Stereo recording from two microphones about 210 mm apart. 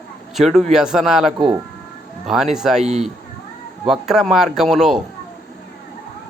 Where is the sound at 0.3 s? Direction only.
Centre (ahead or behind).